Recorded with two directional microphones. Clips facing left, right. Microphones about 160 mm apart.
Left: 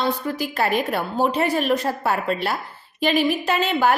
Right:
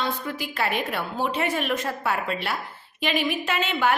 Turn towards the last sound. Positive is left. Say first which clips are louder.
# left 4 dB
turn(degrees=40)  # may be behind; listen again after turning